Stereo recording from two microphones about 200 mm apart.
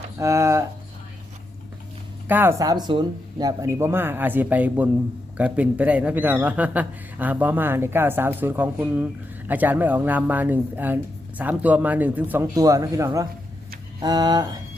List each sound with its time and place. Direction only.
0.2 s speech: 15° right (ahead or behind)
2.2 s speech: 10° right (ahead or behind)